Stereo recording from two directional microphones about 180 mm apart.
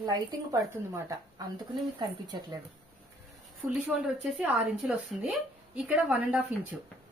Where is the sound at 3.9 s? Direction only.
5° right (ahead or behind).